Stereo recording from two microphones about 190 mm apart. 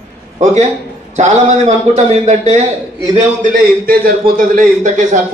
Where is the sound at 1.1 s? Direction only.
40° right (ahead or behind).